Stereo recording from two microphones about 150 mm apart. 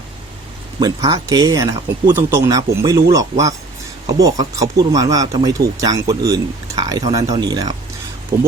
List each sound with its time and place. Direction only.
0.8 s speech: 25° right (ahead or behind)